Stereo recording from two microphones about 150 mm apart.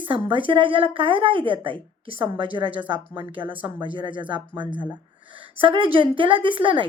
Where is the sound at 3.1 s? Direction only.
35° right (ahead or behind).